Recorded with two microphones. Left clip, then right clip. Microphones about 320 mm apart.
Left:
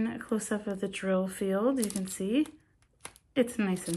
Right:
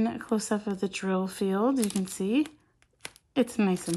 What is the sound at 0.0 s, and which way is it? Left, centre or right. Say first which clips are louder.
Speech: right 4 dB; centre.